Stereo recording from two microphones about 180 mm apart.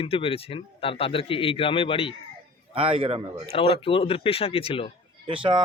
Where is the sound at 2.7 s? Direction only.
30° right (ahead or behind).